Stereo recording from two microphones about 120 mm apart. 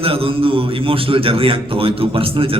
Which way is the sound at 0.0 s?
50° right (ahead or behind).